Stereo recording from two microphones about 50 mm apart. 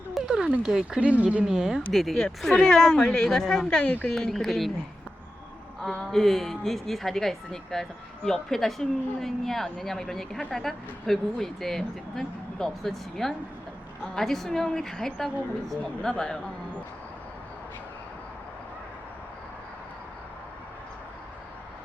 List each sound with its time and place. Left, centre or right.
0.2 s a sound: centre
0.6 s speech: centre
0.9 s speech: right
1.5 s speech: centre
1.9 s a woman's voice: centre
5.8 s a woman's voice: centre